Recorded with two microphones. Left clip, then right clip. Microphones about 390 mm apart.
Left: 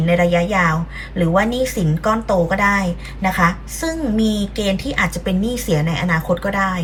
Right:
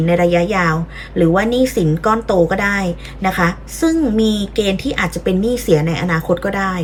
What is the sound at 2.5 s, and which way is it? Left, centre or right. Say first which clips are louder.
A woman's voice: even; centre.